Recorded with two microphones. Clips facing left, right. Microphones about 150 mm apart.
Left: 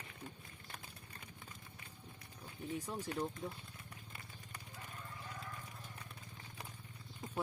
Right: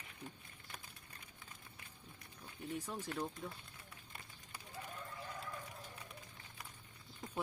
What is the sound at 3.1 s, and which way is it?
Speech, 10° left (ahead or behind).